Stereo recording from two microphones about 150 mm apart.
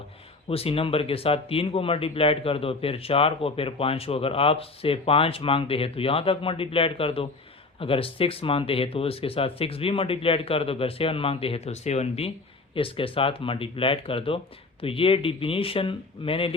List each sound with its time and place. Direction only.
0.4 s speech: 40° left (ahead or behind)